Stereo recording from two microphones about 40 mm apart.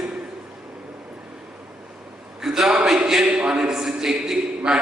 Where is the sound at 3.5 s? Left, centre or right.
Centre.